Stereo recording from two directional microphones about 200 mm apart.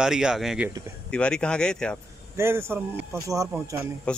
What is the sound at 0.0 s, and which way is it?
Speech, 5° right (ahead or behind).